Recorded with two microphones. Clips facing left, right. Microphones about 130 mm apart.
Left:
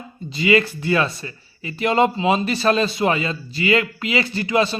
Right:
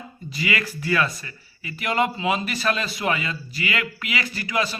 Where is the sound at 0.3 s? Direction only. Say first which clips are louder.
Left 9 dB; 25° left (ahead or behind).